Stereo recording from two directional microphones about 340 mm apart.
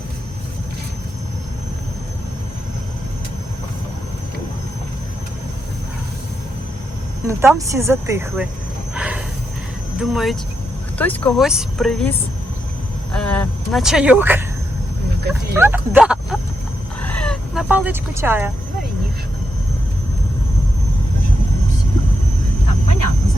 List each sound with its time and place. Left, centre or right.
7.3 s speech: centre
9.0 s a sound: centre
10.0 s speech: centre
13.1 s speech: centre
17.0 s roaring cats: centre